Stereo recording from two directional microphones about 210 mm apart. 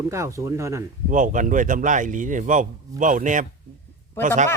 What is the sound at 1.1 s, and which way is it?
Speech, 40° right (ahead or behind).